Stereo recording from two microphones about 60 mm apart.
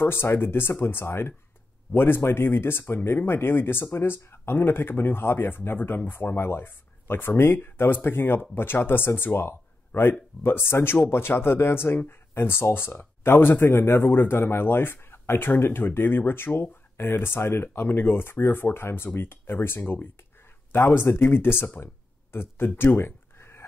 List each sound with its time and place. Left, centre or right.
0.0 s speech: left